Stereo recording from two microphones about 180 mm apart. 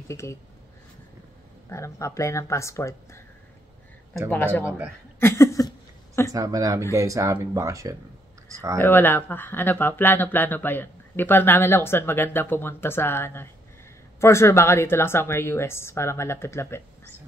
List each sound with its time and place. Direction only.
0.1 s speech: 15° left (ahead or behind)
1.7 s speech: 15° left (ahead or behind)
4.3 s speech: 10° left (ahead or behind)
5.2 s a sound: 15° left (ahead or behind)
6.3 s speech: 20° right (ahead or behind)
8.7 s speech: 10° left (ahead or behind)